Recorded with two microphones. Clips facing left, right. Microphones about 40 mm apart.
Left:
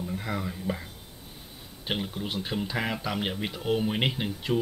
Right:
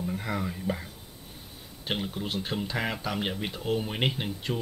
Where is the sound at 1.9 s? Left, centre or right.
Centre.